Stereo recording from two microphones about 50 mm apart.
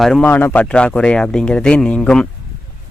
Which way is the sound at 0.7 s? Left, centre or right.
Left.